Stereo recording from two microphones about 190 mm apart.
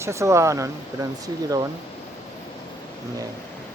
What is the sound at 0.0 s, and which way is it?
Speech, 15° right (ahead or behind).